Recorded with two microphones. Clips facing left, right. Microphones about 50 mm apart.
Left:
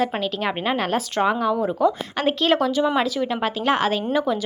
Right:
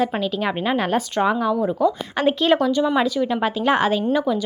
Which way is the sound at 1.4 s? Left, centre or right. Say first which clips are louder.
Right 1 dB; centre.